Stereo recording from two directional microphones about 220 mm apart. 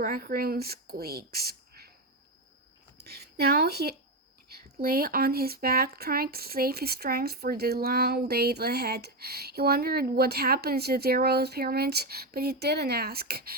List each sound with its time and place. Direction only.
0.0 s speech: 40° right (ahead or behind)
3.0 s speech: 45° right (ahead or behind)